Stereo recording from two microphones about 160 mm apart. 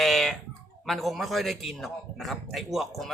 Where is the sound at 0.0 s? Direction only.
Centre (ahead or behind).